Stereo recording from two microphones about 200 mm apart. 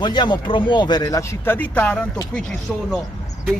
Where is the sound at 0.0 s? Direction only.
20° left (ahead or behind); by 3.0 s 5° left (ahead or behind).